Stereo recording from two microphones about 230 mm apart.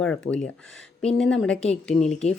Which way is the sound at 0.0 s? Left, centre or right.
Centre.